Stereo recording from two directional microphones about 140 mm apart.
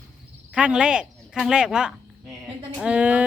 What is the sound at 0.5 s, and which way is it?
Speech, 5° right (ahead or behind).